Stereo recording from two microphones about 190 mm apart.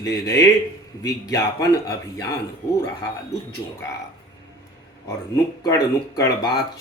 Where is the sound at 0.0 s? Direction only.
20° left (ahead or behind).